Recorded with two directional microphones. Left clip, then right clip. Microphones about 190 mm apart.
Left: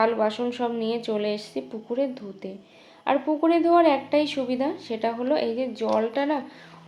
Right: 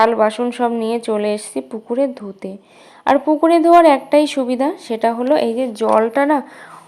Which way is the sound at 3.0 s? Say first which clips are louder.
Right 9 dB; 40° right (ahead or behind).